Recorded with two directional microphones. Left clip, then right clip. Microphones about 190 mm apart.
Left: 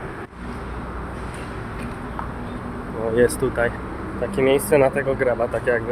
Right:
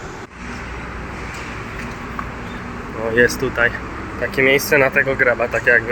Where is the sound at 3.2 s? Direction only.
10° left (ahead or behind).